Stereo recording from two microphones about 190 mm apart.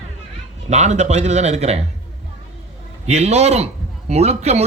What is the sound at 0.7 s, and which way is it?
A man's voice, 40° right (ahead or behind).